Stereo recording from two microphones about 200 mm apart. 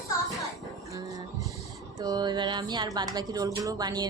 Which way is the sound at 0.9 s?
15° right (ahead or behind).